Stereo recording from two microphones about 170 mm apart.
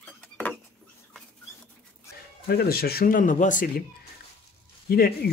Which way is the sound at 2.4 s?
65° left (ahead or behind).